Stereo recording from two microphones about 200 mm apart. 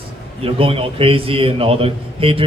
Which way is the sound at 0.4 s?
30° right (ahead or behind).